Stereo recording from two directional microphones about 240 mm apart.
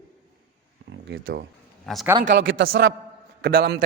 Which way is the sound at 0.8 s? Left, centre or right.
Right.